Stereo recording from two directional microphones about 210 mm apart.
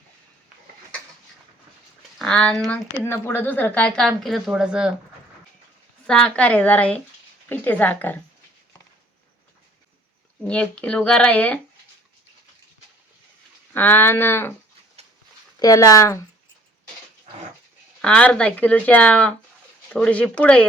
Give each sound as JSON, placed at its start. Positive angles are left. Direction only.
{"t": 2.1, "sound": "speech", "side_deg": 5}
{"t": 6.1, "sound": "speech", "side_deg": 5}
{"t": 10.4, "sound": "speech", "side_deg": 5}
{"t": 13.7, "sound": "speech", "side_deg": 10}
{"t": 15.5, "sound": "speech", "side_deg": 15}
{"t": 18.0, "sound": "speech", "side_deg": 5}